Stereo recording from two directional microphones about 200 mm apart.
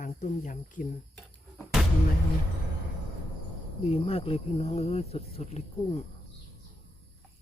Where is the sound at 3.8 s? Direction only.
30° left (ahead or behind).